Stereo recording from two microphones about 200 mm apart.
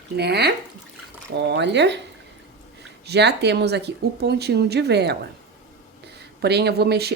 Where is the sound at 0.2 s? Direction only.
55° right (ahead or behind).